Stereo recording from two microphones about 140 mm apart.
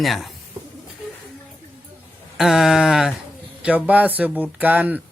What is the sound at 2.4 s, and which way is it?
Speech, centre (ahead or behind).